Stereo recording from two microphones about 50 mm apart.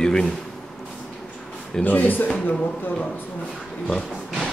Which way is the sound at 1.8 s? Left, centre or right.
Left.